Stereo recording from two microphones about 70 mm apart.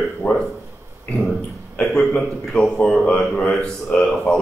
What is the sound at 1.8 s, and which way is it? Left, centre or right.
Speech, centre.